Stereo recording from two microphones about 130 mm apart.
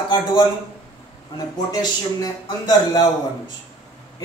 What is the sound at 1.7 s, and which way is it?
Speech, 30° left (ahead or behind).